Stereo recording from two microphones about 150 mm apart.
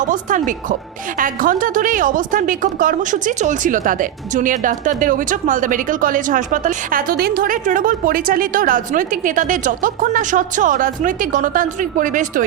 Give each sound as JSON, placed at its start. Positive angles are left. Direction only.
{"t": 0.0, "sound": "a woman's voice", "side_deg": -60}